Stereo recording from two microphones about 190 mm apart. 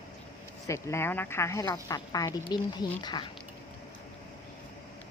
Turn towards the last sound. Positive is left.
turn(degrees=25)  # may be behind; listen again after turning